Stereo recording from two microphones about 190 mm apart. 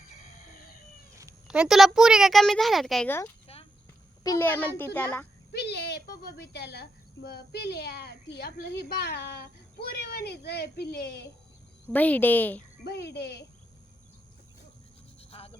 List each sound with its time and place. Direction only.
1.5 s speech: 5° right (ahead or behind)
3.4 s a sound: 30° left (ahead or behind)
4.2 s a woman's voice: 15° left (ahead or behind)
5.5 s a child's voice: 60° left (ahead or behind)
11.9 s a woman's voice: 10° left (ahead or behind)
12.8 s a child's voice: 60° left (ahead or behind)
15.2 s a sound: 30° left (ahead or behind)